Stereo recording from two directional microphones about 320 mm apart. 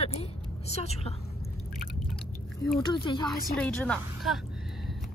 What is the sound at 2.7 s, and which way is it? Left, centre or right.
A woman's voice, centre.